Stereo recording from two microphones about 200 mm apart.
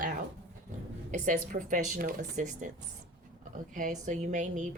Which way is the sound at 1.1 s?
40° right (ahead or behind).